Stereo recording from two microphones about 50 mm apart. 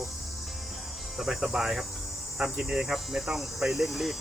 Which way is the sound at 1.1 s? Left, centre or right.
Centre.